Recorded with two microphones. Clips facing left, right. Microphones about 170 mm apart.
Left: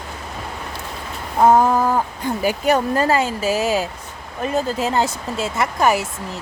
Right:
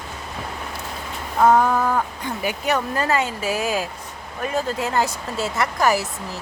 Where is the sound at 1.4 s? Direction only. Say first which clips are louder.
Left 2 dB; 25° left (ahead or behind).